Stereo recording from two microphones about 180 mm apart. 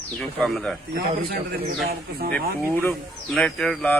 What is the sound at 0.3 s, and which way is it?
Speech, 5° left (ahead or behind).